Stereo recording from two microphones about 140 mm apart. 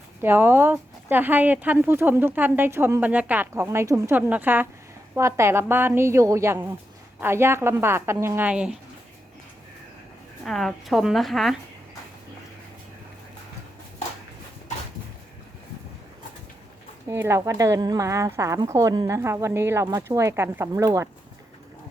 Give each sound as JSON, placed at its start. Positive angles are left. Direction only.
{"t": 0.2, "sound": "a woman's voice", "side_deg": -15}
{"t": 10.4, "sound": "a woman's voice", "side_deg": 0}
{"t": 17.1, "sound": "a woman's voice", "side_deg": -20}